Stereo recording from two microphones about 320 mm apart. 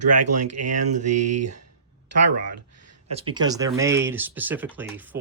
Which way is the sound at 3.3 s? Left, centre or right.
Centre.